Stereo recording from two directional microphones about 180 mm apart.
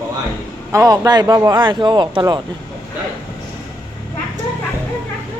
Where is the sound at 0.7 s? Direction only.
20° right (ahead or behind).